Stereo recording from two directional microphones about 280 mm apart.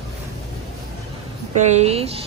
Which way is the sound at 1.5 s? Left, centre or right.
Right.